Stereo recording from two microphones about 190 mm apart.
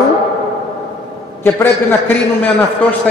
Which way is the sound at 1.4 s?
10° left (ahead or behind).